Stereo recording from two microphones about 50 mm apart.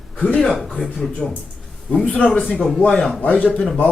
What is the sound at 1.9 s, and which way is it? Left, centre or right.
Speech, left.